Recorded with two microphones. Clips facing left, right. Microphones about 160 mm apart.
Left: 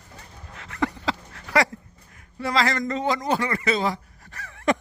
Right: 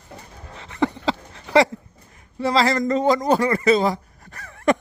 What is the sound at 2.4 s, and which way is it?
Speech, 35° right (ahead or behind).